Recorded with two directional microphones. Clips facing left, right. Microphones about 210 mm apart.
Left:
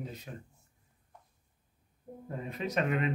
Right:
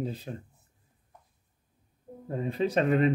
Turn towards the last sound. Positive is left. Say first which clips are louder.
# right 7 dB
turn(degrees=-35)  # may be behind; listen again after turning